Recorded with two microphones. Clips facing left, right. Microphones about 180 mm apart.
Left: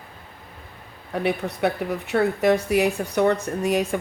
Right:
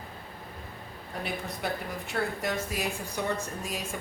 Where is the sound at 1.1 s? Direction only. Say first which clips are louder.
Left 11 dB; 70° left (ahead or behind).